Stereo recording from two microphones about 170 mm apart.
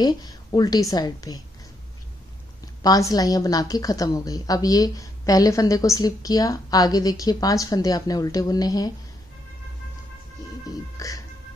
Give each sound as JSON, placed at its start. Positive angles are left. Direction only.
{"t": 0.0, "sound": "a woman's voice", "side_deg": 25}
{"t": 2.6, "sound": "a woman's voice", "side_deg": 20}
{"t": 10.7, "sound": "a woman's voice", "side_deg": 20}